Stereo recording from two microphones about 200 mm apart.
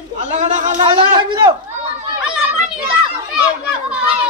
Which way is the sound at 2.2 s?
5° right (ahead or behind).